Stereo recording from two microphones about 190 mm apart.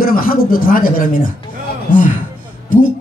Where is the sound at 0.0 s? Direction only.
50° left (ahead or behind).